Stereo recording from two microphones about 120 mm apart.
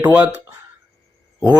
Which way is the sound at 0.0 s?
15° right (ahead or behind).